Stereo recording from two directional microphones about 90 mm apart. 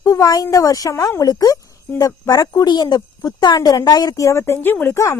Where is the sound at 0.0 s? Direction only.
35° left (ahead or behind).